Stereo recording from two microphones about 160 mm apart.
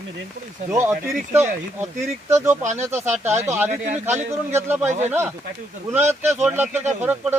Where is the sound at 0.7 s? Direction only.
15° right (ahead or behind).